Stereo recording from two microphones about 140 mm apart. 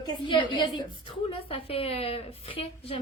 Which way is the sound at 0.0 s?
35° left (ahead or behind).